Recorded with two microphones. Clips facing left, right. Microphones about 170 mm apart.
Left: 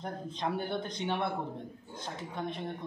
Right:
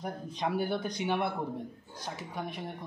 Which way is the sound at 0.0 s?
10° right (ahead or behind).